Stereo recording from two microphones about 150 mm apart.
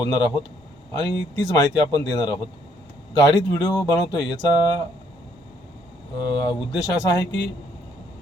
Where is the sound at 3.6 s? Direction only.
30° left (ahead or behind).